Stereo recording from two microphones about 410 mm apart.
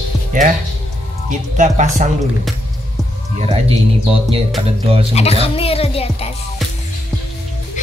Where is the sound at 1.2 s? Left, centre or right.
Centre.